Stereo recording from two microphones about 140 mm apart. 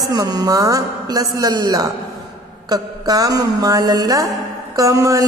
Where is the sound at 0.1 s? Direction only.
30° right (ahead or behind).